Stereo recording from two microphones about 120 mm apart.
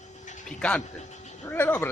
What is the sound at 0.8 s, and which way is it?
Speech, 75° left (ahead or behind).